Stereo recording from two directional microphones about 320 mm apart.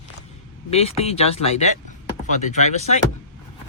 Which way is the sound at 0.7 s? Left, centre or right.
Centre.